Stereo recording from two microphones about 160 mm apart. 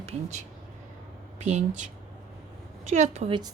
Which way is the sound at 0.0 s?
45° right (ahead or behind).